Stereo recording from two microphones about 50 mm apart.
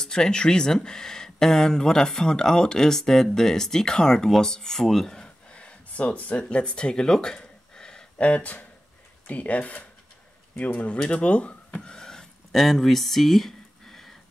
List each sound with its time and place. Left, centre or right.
0.0 s speech: centre
8.2 s speech: left; by 14.1 s centre